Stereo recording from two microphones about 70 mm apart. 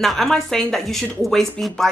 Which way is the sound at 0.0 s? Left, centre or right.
Centre.